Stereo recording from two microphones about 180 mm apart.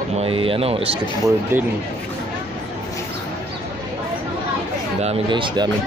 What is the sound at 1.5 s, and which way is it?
Speech, 10° right (ahead or behind).